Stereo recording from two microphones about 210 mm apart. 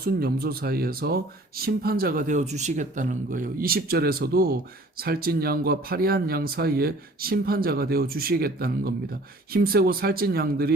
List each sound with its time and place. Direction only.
0.0 s speech: 45° right (ahead or behind)